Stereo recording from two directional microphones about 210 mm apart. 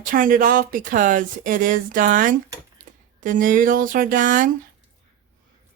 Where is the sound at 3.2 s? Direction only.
40° right (ahead or behind).